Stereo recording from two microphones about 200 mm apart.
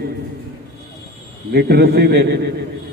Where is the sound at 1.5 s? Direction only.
50° right (ahead or behind).